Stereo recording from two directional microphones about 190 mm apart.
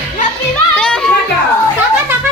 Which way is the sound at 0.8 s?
5° left (ahead or behind).